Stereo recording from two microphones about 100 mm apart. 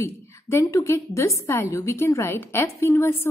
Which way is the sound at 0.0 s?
30° left (ahead or behind).